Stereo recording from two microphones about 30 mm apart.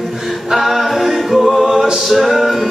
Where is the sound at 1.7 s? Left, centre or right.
Centre.